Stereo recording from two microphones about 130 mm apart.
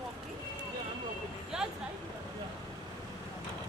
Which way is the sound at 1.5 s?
5° right (ahead or behind).